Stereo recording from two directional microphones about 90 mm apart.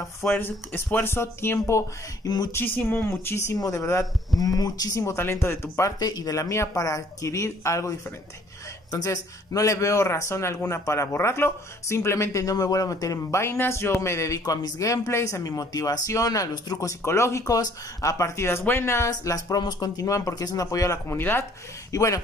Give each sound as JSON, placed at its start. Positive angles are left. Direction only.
{"t": 0.0, "sound": "speech", "side_deg": 25}
{"t": 2.2, "sound": "speech", "side_deg": 50}
{"t": 2.5, "sound": "speech", "side_deg": 25}
{"t": 5.1, "sound": "speech", "side_deg": 25}
{"t": 8.9, "sound": "speech", "side_deg": 40}
{"t": 14.4, "sound": "speech", "side_deg": 45}
{"t": 17.0, "sound": "speech", "side_deg": 30}
{"t": 19.0, "sound": "speech", "side_deg": 40}
{"t": 21.9, "sound": "speech", "side_deg": 40}